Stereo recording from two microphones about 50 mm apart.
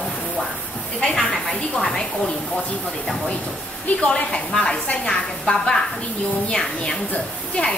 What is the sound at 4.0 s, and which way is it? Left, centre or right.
A woman's voice, left.